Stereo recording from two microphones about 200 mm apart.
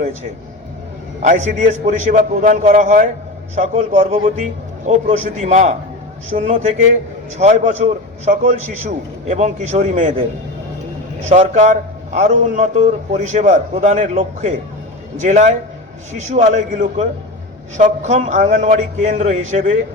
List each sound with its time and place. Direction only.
1.2 s a man's voice: 40° right (ahead or behind)
11.3 s a man's voice: 35° right (ahead or behind)